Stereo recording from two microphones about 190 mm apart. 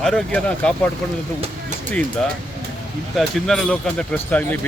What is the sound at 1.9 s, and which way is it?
Speech, 5° left (ahead or behind).